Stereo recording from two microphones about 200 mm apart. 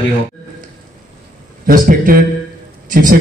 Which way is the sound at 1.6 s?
45° right (ahead or behind).